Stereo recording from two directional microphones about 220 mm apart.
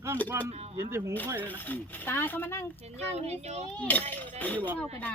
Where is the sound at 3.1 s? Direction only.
30° right (ahead or behind).